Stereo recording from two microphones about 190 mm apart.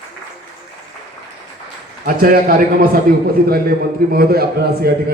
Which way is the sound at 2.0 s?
50° right (ahead or behind).